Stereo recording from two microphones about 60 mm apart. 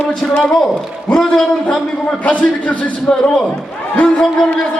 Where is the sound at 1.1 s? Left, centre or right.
Centre.